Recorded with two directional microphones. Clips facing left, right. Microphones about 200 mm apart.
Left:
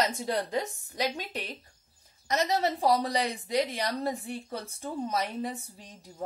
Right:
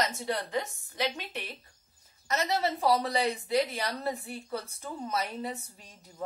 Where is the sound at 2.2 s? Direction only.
15° left (ahead or behind).